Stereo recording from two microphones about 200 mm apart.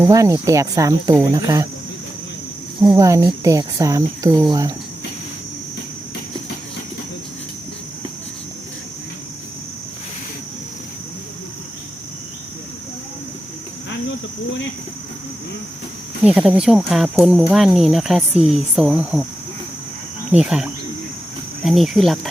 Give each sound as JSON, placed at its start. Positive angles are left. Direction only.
{"t": 0.0, "sound": "speech", "side_deg": -15}
{"t": 2.9, "sound": "speech", "side_deg": -15}
{"t": 16.2, "sound": "speech", "side_deg": -5}
{"t": 20.3, "sound": "speech", "side_deg": -5}